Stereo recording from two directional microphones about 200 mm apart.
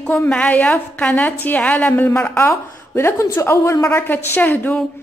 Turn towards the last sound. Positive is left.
turn(degrees=5)  # may be behind; listen again after turning